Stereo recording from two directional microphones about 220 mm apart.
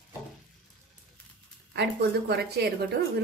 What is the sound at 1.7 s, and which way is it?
A woman's voice, 50° right (ahead or behind).